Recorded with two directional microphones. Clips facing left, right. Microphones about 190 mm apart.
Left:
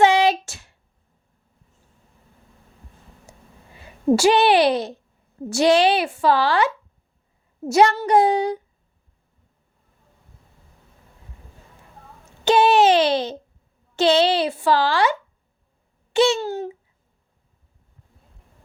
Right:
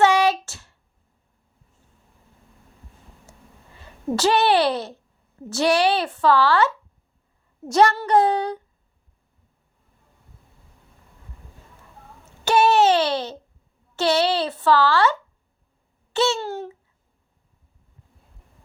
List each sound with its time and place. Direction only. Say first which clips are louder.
0.0 s a sound: left 1 dB; 20° left (ahead or behind)
3.8 s a woman's voice: left 6 dB; 10° left (ahead or behind)
12.5 s a child's voice: left 2 dB; 15° left (ahead or behind)
16.1 s a woman's voice: left 4 dB; 15° left (ahead or behind)
16.4 s speech: left 3 dB; centre (ahead or behind)